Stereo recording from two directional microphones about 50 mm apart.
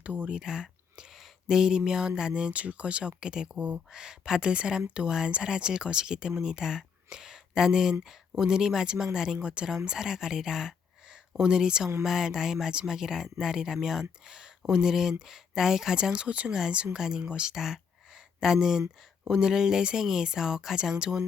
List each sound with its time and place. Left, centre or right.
0.0 s speech: right
0.3 s speech: centre
16.1 s speech: right